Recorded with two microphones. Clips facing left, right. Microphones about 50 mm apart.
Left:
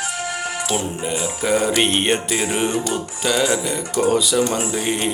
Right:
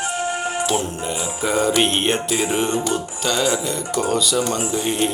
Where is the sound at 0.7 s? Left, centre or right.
Centre.